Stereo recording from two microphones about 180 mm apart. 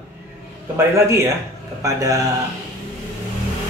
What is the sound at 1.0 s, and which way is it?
Speech, 15° right (ahead or behind).